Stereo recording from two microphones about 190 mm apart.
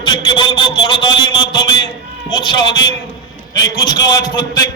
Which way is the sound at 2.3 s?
25° left (ahead or behind).